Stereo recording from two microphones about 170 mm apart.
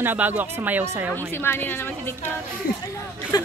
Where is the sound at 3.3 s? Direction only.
25° left (ahead or behind).